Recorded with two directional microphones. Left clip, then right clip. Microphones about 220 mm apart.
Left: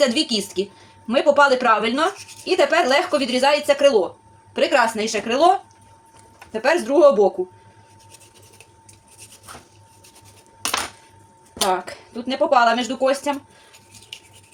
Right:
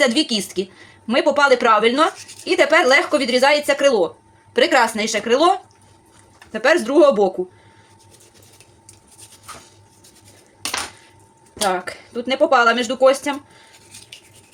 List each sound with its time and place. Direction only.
0.0 s speech: 30° right (ahead or behind)
6.5 s speech: 40° right (ahead or behind)
11.7 s speech: 40° right (ahead or behind)